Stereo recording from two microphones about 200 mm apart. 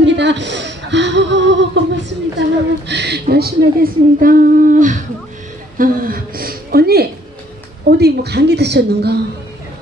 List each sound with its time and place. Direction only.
0.0 s a woman's voice: 60° right (ahead or behind)